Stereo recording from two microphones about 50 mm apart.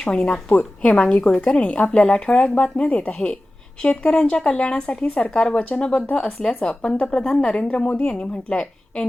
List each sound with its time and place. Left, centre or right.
0.0 s speech: centre
0.5 s speech: left